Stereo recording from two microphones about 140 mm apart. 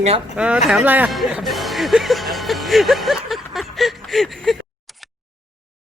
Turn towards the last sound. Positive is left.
turn(degrees=0)  # may be behind; listen again after turning